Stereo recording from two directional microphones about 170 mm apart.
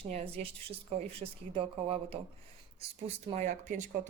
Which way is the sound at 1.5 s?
35° right (ahead or behind).